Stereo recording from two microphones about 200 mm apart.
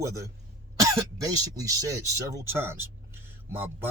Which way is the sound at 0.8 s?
15° right (ahead or behind).